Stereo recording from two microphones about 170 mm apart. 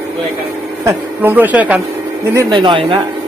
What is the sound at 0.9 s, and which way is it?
Speech, 10° right (ahead or behind).